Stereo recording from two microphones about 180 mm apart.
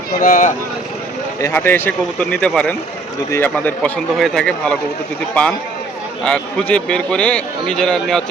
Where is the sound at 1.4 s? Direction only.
15° left (ahead or behind).